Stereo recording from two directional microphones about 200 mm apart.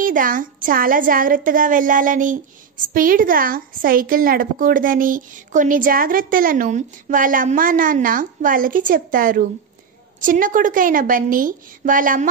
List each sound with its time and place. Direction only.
0.0 s a woman's voice: 45° right (ahead or behind)